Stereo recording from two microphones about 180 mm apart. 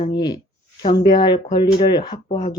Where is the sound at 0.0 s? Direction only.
20° left (ahead or behind).